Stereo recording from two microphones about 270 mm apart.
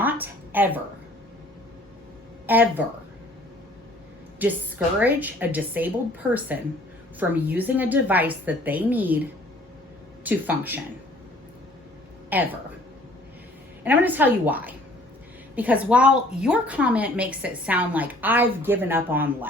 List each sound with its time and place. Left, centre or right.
0.0 s a sound: centre
2.5 s a woman's voice: centre
4.4 s a woman's voice: centre
7.2 s a woman's voice: centre
10.2 s a woman's voice: centre
12.3 s a woman's voice: centre
13.8 s a woman's voice: centre